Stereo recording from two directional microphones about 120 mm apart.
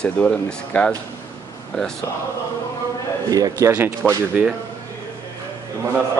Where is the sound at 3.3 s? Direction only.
30° right (ahead or behind).